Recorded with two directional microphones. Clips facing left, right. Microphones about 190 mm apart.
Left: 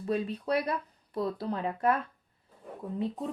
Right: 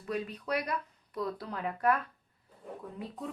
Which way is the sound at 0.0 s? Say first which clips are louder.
Left 5 dB; 30° left (ahead or behind).